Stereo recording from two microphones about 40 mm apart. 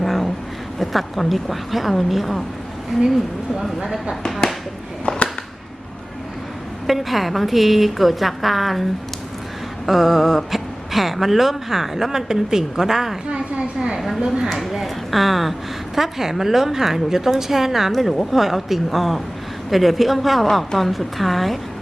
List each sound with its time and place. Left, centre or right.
0.0 s a sound: centre
0.8 s a woman's voice: centre
5.0 s a sound: left
6.8 s a woman's voice: centre
14.2 s speech: centre
14.5 s a woman's voice: centre